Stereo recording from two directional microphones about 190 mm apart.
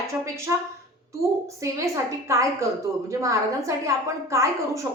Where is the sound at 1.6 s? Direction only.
15° right (ahead or behind).